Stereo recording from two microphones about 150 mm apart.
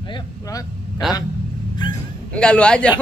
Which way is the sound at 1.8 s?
30° left (ahead or behind).